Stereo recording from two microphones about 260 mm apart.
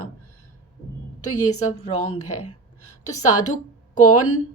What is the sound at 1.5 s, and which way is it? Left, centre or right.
Speech, left.